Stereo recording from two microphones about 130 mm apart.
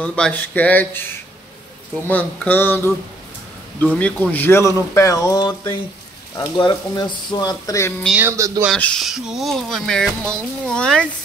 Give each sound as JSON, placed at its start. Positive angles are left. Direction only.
{"t": 0.0, "sound": "speech", "side_deg": 10}
{"t": 2.0, "sound": "speech", "side_deg": 15}
{"t": 3.9, "sound": "speech", "side_deg": 10}
{"t": 8.2, "sound": "speech", "side_deg": -20}
{"t": 8.7, "sound": "speech", "side_deg": 10}
{"t": 9.0, "sound": "a child's voice", "side_deg": -5}